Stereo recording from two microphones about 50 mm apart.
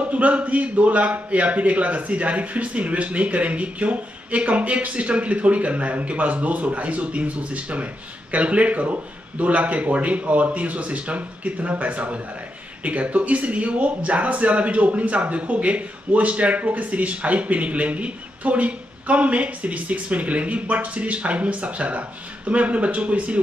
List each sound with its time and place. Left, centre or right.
0.0 s speech: right